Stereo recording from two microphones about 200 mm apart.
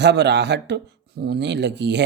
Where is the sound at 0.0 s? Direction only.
60° right (ahead or behind).